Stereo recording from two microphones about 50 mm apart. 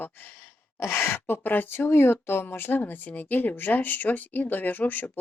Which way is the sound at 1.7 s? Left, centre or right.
Left.